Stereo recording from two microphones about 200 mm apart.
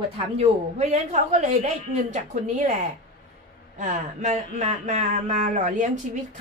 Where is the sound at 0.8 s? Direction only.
35° right (ahead or behind).